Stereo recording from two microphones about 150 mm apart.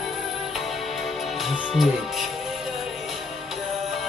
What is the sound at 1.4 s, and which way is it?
Music, centre (ahead or behind).